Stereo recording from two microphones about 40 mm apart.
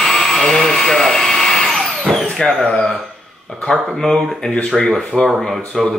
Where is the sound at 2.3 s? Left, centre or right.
Centre.